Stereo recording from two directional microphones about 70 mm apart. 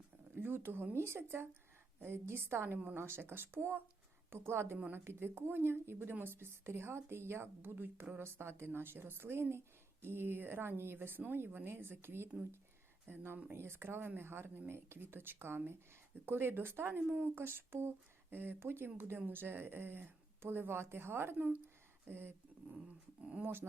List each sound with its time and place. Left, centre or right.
0.3 s speech: right
23.4 s speech: right